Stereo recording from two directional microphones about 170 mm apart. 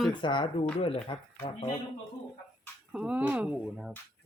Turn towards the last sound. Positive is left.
turn(degrees=-5)  # may be behind; listen again after turning